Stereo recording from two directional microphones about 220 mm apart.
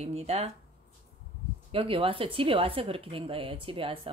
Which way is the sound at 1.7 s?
25° right (ahead or behind).